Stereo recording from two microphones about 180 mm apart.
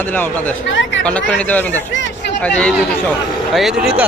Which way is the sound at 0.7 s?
90° left.